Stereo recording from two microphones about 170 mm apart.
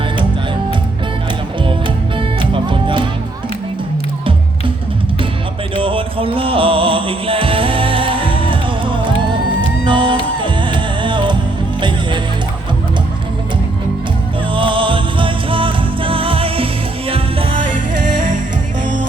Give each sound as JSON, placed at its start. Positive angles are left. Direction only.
{"t": 2.1, "sound": "music", "side_deg": -30}
{"t": 5.7, "sound": "music", "side_deg": -30}
{"t": 14.5, "sound": "music", "side_deg": -30}